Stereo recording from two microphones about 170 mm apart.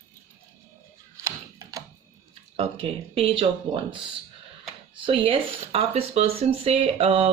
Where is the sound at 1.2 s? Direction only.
20° right (ahead or behind).